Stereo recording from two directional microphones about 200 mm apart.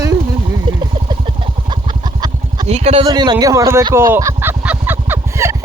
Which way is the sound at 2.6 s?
30° right (ahead or behind).